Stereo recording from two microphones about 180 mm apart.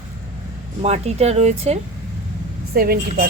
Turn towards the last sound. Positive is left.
turn(degrees=-55)  # may be behind; listen again after turning